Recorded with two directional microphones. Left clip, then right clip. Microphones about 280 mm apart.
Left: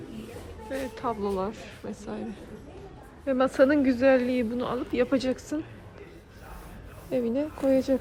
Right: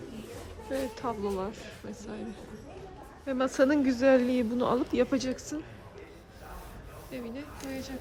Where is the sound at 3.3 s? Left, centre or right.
Centre.